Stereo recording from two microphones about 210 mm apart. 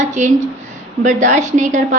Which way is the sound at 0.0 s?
35° right (ahead or behind).